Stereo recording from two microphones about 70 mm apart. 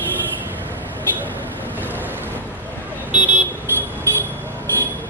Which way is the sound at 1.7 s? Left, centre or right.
Right.